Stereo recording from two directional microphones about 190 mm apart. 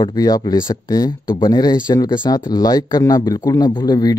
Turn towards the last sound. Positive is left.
turn(degrees=20)  # may be behind; listen again after turning